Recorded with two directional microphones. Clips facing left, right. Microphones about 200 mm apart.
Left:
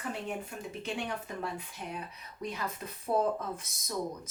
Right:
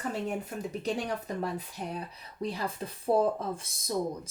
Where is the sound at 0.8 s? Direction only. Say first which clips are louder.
Right 3 dB; 40° right (ahead or behind).